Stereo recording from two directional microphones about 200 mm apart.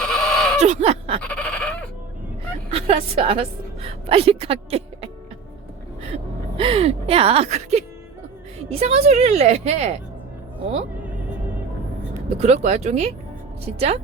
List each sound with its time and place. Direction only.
0.0 s goat: 5° left (ahead or behind)
0.6 s a sound: 35° right (ahead or behind)
1.2 s goat: 5° left (ahead or behind)
2.6 s a woman's voice: 30° right (ahead or behind)
6.6 s speech: 30° right (ahead or behind)
12.4 s speech: 35° right (ahead or behind)